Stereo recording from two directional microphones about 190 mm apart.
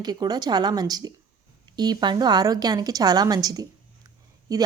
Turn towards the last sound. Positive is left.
turn(degrees=-20)  # may be behind; listen again after turning